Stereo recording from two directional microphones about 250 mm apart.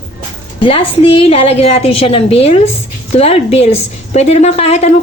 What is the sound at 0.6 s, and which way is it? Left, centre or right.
A woman's voice, left.